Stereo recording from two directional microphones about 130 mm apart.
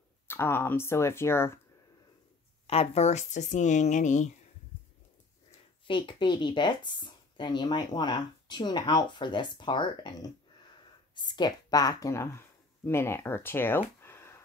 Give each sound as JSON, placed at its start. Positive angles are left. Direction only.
{"t": 0.3, "sound": "speech", "side_deg": 15}
{"t": 2.6, "sound": "speech", "side_deg": 50}
{"t": 5.9, "sound": "speech", "side_deg": 40}
{"t": 11.1, "sound": "speech", "side_deg": 35}